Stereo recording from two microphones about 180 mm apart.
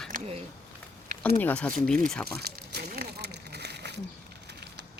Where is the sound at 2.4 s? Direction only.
60° right (ahead or behind).